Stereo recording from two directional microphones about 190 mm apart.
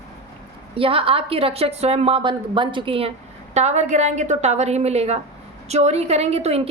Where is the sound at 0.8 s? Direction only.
30° right (ahead or behind).